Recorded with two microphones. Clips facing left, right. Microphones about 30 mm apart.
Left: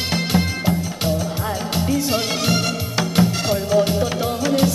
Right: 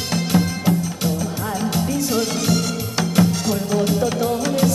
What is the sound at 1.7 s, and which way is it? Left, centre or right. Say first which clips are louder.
Music: left 2 dB; left.